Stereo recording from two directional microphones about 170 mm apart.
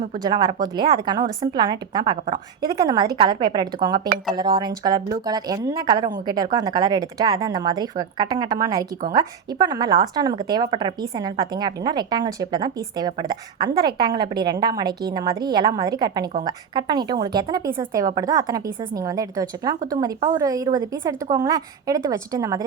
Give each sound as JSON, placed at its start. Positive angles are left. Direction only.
{"t": 0.2, "sound": "a woman's voice", "side_deg": -25}